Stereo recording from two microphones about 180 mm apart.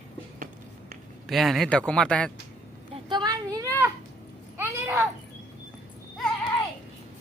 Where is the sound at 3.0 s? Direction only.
25° right (ahead or behind).